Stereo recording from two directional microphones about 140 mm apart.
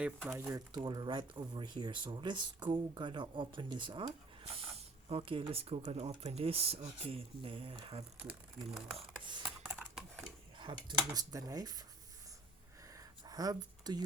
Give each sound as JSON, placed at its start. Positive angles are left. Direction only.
{"t": 0.3, "sound": "speech", "side_deg": -15}
{"t": 0.9, "sound": "speech", "side_deg": -30}
{"t": 8.3, "sound": "speech", "side_deg": -5}
{"t": 9.0, "sound": "speech", "side_deg": -35}
{"t": 9.6, "sound": "typing", "side_deg": -10}
{"t": 10.6, "sound": "speech", "side_deg": -35}
{"t": 13.0, "sound": "a sound", "side_deg": -25}